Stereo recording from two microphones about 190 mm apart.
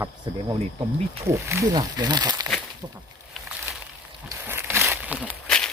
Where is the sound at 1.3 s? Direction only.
15° right (ahead or behind).